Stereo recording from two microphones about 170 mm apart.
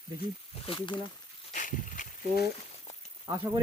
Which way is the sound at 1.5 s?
50° left (ahead or behind).